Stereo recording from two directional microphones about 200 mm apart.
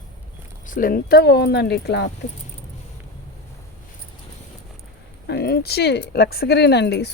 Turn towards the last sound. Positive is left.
turn(degrees=55)  # may be behind; listen again after turning